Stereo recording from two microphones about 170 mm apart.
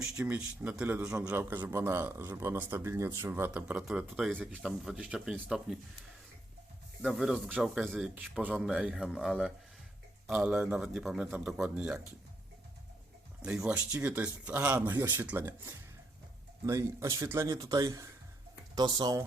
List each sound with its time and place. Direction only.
0.0 s a man's voice: 5° right (ahead or behind)
7.0 s a man's voice: centre (ahead or behind)
8.1 s a man's voice: 10° right (ahead or behind)
13.4 s speech: 5° right (ahead or behind); by 19.2 s 25° right (ahead or behind)